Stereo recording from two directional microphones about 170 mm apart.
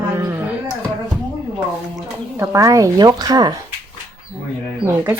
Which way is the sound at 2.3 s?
20° right (ahead or behind).